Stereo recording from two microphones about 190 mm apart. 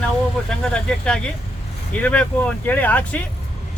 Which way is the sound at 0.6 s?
5° left (ahead or behind).